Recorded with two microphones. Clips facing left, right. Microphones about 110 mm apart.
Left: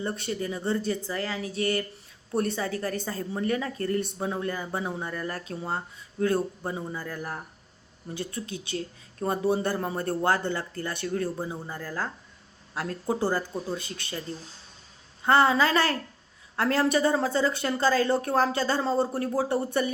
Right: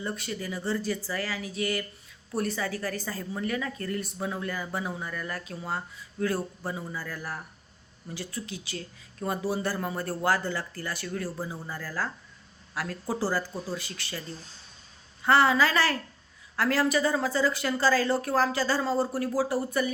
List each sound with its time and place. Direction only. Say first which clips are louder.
0.0 s a woman's voice: left 3 dB; 30° left (ahead or behind)